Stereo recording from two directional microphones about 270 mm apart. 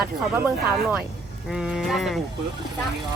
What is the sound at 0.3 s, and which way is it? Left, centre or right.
Speech, centre.